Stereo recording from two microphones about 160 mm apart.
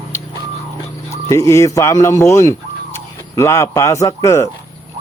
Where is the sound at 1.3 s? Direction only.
20° left (ahead or behind).